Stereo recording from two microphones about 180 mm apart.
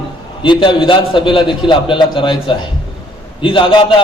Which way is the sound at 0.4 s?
25° left (ahead or behind).